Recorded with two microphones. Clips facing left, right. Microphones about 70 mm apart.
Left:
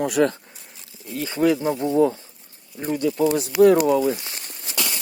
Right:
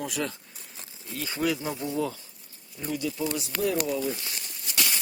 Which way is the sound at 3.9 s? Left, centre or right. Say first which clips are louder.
Left 10 dB; left.